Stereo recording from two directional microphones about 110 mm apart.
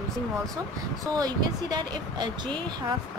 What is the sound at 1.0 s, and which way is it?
A woman's voice, 35° right (ahead or behind).